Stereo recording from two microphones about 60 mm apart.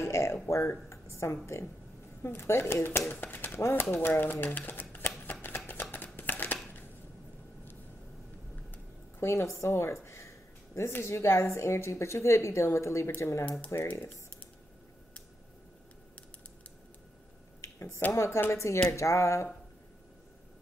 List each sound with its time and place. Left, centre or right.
0.0 s a woman's voice: left
5.2 s shuffling cards: left
5.7 s a sound: left
9.2 s a sound: left
11.1 s a woman's voice: left
17.6 s finger snapping: left
18.1 s a woman's voice: left